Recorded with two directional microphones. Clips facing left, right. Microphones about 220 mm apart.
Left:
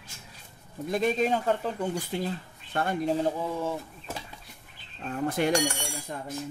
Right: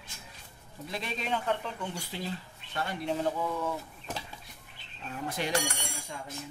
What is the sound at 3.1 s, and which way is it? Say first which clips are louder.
Speech: left 3 dB; 30° left (ahead or behind).